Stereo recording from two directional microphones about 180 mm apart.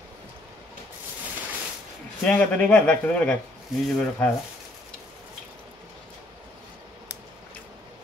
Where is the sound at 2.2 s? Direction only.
10° left (ahead or behind).